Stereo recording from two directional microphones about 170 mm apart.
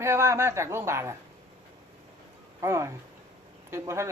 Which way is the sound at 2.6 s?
15° right (ahead or behind).